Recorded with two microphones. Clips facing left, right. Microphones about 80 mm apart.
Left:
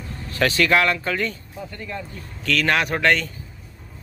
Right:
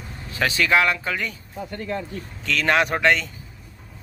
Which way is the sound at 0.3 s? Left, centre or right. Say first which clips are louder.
Left 1 dB; centre.